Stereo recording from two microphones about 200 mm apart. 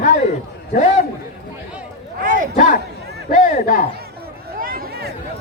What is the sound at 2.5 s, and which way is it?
Speech, 40° left (ahead or behind).